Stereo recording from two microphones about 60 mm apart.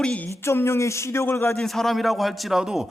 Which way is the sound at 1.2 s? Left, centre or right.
Left.